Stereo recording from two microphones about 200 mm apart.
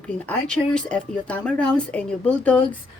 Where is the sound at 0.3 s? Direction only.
5° left (ahead or behind).